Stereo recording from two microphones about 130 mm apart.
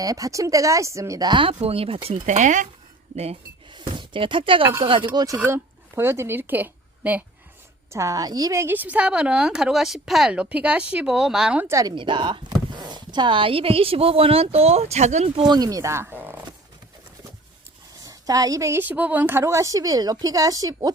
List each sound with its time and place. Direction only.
0.0 s a woman's voice: 25° right (ahead or behind); by 2.0 s 45° right (ahead or behind)
2.2 s speech: 70° right (ahead or behind)
3.7 s speech: 35° right (ahead or behind)
5.4 s a woman's voice: 20° right (ahead or behind)
7.9 s a woman's voice: 25° right (ahead or behind); by 11.6 s 5° right (ahead or behind)
11.7 s a woman's voice: 25° right (ahead or behind)
11.9 s speech: 40° right (ahead or behind); by 15.3 s 60° right (ahead or behind)
15.4 s speech: 35° right (ahead or behind); by 16.4 s 15° right (ahead or behind)
18.0 s a woman's voice: 30° right (ahead or behind)